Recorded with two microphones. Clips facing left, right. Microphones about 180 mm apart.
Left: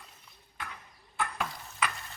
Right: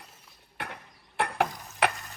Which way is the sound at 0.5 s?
65° right (ahead or behind).